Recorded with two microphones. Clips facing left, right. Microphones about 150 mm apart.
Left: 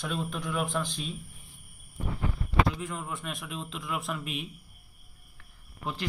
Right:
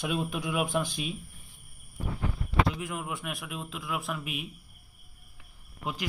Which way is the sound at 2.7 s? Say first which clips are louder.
Right 1 dB; 10° right (ahead or behind).